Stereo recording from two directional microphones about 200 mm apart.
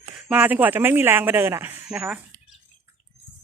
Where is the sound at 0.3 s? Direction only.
5° right (ahead or behind).